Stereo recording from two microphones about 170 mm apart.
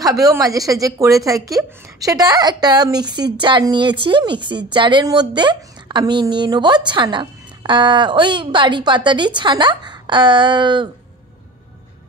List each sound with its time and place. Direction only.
0.0 s a woman's voice: 20° right (ahead or behind)